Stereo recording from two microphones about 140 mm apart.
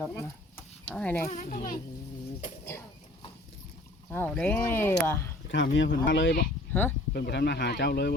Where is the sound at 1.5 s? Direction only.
80° left.